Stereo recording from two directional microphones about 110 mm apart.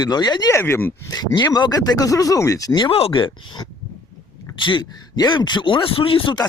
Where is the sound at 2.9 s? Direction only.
55° left (ahead or behind).